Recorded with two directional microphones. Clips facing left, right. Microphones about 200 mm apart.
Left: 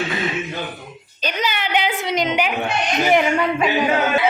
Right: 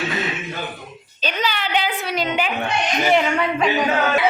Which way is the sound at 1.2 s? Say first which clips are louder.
Even; 15° left (ahead or behind).